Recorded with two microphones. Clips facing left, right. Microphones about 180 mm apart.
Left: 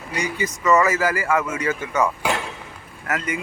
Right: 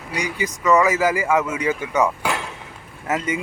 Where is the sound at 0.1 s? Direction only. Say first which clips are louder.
Even; 10° right (ahead or behind).